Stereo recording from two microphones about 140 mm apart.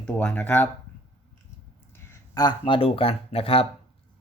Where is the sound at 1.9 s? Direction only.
15° left (ahead or behind).